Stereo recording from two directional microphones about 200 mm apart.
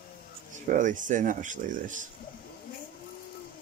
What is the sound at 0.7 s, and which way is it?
Speech, 40° right (ahead or behind).